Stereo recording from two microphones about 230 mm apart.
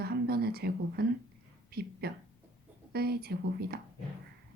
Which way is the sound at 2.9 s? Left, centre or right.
Right.